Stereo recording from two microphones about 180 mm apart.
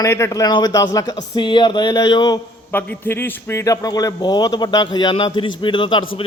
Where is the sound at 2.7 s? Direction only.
10° left (ahead or behind).